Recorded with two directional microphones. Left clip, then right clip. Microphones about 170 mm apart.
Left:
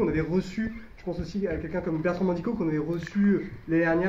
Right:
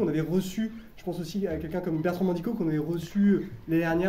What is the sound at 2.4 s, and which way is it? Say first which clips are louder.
Speech: left 1 dB; 10° right (ahead or behind).